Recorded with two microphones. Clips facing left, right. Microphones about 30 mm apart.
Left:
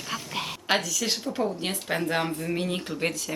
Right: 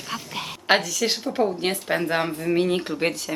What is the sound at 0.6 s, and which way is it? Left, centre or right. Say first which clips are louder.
A woman's voice: right 6 dB; right.